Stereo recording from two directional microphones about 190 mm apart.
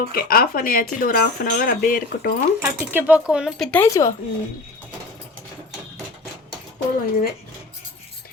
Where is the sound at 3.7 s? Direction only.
10° left (ahead or behind).